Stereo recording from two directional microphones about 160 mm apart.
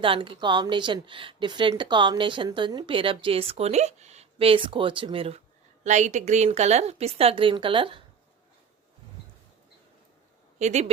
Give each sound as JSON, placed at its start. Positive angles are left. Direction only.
{"t": 0.0, "sound": "a woman's voice", "side_deg": -30}
{"t": 5.8, "sound": "a woman's voice", "side_deg": -45}
{"t": 10.6, "sound": "speech", "side_deg": -45}